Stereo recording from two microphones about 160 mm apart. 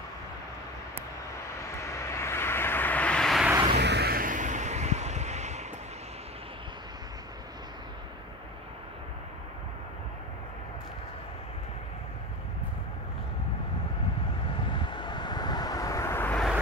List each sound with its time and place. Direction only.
1.8 s vehicle: 20° left (ahead or behind)
3.7 s vehicle: 90° right; by 5.7 s 45° right (ahead or behind)
14.6 s vehicle: 30° left (ahead or behind); by 16.3 s 15° left (ahead or behind)